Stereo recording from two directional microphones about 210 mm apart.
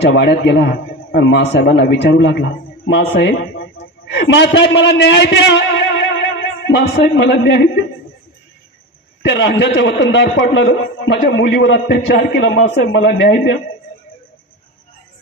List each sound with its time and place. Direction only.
0.0 s a man's voice: 55° left (ahead or behind)
9.2 s a man's voice: 55° left (ahead or behind)
11.1 s a man's voice: 50° left (ahead or behind)